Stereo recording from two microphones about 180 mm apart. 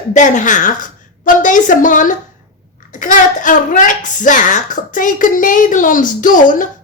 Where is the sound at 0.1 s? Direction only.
45° left (ahead or behind).